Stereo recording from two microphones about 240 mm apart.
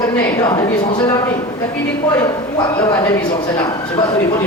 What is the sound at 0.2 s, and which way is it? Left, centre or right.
Speech, centre.